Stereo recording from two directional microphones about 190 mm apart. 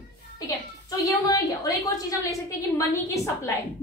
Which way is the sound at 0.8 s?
20° left (ahead or behind).